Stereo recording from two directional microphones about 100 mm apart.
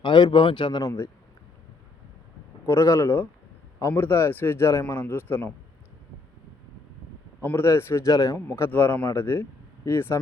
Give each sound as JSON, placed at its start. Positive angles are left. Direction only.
{"t": 0.0, "sound": "speech", "side_deg": 50}
{"t": 0.8, "sound": "speech", "side_deg": 30}
{"t": 2.6, "sound": "speech", "side_deg": 30}
{"t": 7.4, "sound": "speech", "side_deg": 25}